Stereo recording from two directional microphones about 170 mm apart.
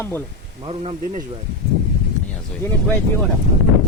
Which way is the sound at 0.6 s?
35° right (ahead or behind).